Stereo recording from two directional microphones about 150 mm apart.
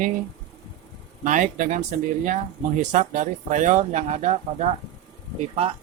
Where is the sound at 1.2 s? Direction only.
55° right (ahead or behind).